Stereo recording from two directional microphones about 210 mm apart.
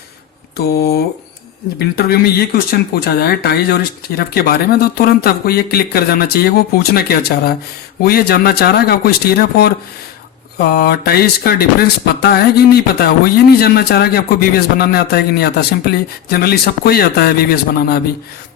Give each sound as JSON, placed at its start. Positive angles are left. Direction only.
{"t": 0.5, "sound": "speech", "side_deg": 50}